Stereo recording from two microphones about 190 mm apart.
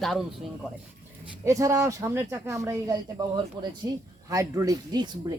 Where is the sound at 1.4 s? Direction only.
15° right (ahead or behind).